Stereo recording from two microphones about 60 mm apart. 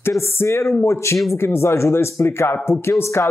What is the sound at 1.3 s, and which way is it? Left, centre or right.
Speech, left.